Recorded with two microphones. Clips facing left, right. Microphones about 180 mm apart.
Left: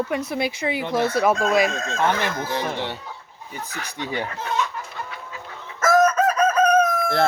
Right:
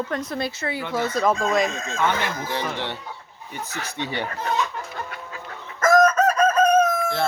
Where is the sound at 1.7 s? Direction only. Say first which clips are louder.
Left 3 dB; 65° left (ahead or behind).